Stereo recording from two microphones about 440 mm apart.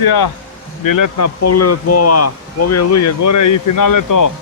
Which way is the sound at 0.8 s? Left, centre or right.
Left.